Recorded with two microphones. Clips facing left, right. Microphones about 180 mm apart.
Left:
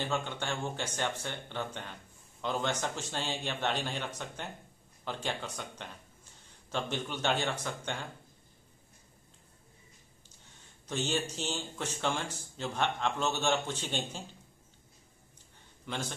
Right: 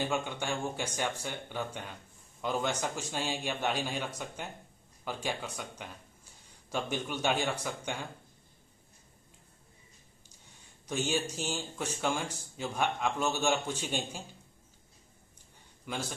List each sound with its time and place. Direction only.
0.0 s speech: 10° right (ahead or behind)
10.9 s speech: 10° right (ahead or behind)
15.8 s a man's voice: 10° right (ahead or behind)